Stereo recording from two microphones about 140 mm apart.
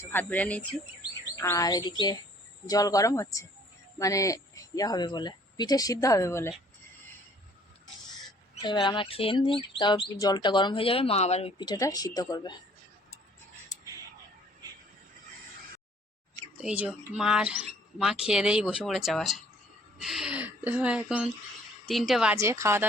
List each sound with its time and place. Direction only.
0.0 s speech: 15° left (ahead or behind)
1.4 s speech: 20° left (ahead or behind)
8.6 s speech: 35° left (ahead or behind); by 11.5 s 50° left (ahead or behind)
11.5 s speech: 30° left (ahead or behind)
16.6 s speech: 10° right (ahead or behind)
22.4 s speech: 20° right (ahead or behind)